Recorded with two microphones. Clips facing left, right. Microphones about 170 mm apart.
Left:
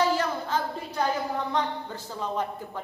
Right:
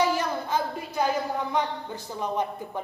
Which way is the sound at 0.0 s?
15° right (ahead or behind).